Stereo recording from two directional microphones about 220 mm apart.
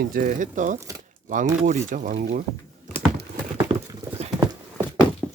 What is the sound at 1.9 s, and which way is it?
Speech, 35° right (ahead or behind).